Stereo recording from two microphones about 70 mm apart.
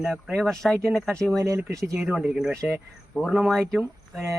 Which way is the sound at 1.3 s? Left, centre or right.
Right.